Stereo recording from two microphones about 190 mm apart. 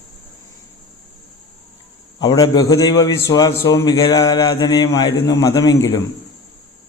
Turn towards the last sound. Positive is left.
turn(degrees=20)  # may be behind; listen again after turning